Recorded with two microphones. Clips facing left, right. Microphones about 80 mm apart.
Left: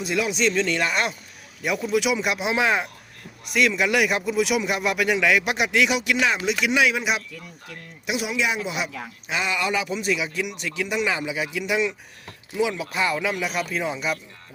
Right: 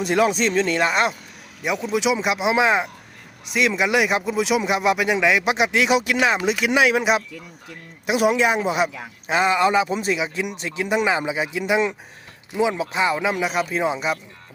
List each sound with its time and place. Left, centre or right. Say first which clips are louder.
0.0 s speech: right 4 dB; right